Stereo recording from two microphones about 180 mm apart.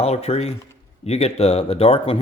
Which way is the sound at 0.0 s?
35° left (ahead or behind).